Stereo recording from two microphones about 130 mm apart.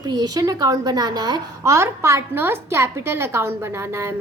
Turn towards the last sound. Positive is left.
turn(degrees=-20)  # may be behind; listen again after turning